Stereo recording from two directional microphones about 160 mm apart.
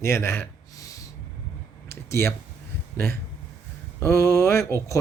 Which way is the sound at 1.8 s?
15° left (ahead or behind).